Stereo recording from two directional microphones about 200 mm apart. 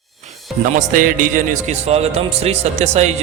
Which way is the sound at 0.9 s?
40° right (ahead or behind).